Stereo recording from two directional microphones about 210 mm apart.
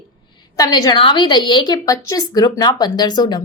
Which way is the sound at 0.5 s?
20° left (ahead or behind).